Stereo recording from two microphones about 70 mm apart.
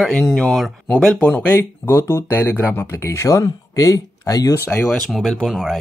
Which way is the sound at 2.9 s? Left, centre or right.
Left.